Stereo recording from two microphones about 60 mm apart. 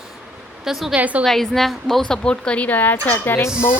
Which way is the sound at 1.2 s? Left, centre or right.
Centre.